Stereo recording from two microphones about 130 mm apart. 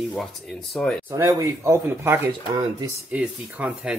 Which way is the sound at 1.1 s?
25° right (ahead or behind).